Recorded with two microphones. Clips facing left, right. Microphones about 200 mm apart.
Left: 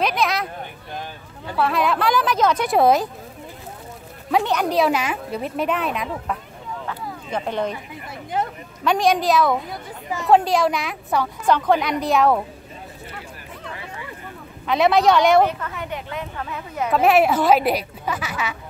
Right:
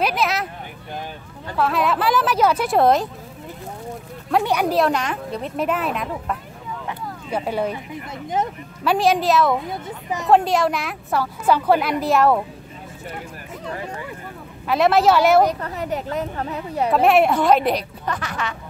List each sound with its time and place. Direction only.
0.0 s a sound: 5° right (ahead or behind)
1.5 s a woman's voice: centre (ahead or behind)
4.3 s a woman's voice: 5° right (ahead or behind)
4.7 s a woman's voice: 5° left (ahead or behind)
6.9 s a sound: 10° right (ahead or behind)
8.8 s a woman's voice: 5° right (ahead or behind)
14.7 s a woman's voice: centre (ahead or behind)
15.4 s a woman's voice: 35° right (ahead or behind)
16.9 s a woman's voice: centre (ahead or behind)